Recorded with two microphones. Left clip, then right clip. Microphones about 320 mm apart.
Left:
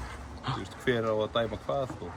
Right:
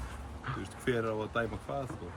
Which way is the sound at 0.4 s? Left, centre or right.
Centre.